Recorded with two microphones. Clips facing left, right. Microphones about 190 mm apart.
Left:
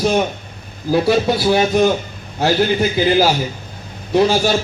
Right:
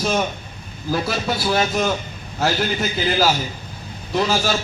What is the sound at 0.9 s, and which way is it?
A man's voice, 15° left (ahead or behind).